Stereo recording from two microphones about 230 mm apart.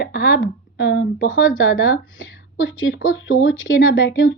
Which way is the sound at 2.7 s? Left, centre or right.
Left.